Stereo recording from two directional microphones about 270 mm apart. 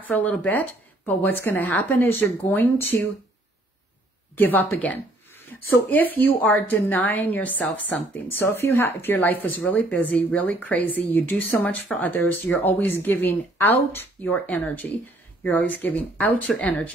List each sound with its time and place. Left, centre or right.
0.0 s speech: centre
4.4 s speech: centre